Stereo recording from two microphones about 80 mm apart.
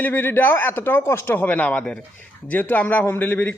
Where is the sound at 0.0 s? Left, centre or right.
Left.